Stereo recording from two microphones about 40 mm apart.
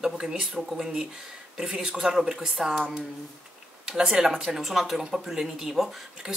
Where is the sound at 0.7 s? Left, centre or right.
Centre.